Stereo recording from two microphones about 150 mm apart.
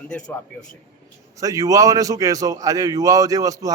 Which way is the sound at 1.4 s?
20° right (ahead or behind).